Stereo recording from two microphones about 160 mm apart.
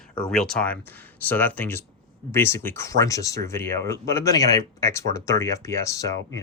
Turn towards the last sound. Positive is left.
turn(degrees=20)  # may be behind; listen again after turning